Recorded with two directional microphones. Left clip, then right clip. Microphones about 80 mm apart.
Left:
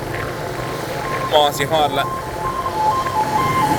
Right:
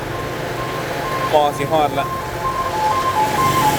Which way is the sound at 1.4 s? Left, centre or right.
Left.